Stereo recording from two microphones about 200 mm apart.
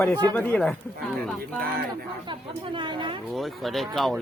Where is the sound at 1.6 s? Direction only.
50° right (ahead or behind).